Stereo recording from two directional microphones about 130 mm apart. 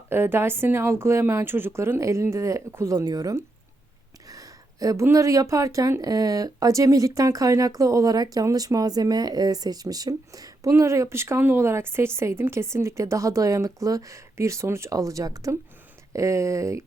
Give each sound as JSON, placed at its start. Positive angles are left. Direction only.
{"t": 0.1, "sound": "speech", "side_deg": -20}